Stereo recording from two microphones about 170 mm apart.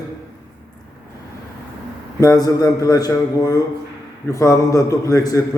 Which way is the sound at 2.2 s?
20° left (ahead or behind).